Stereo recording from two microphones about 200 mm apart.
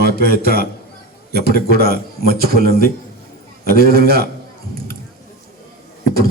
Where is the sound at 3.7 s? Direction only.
50° right (ahead or behind).